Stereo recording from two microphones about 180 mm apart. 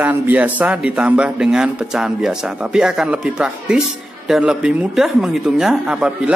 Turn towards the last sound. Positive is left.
turn(degrees=-5)  # may be behind; listen again after turning